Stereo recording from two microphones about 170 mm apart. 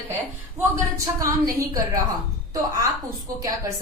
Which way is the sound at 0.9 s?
20° right (ahead or behind).